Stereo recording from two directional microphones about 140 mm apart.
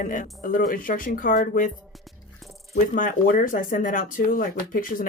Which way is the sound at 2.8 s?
75° left (ahead or behind).